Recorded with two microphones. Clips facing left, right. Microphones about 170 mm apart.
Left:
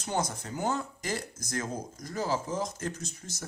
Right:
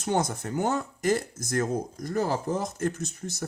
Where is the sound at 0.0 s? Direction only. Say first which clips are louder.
Right 5 dB; 55° right (ahead or behind).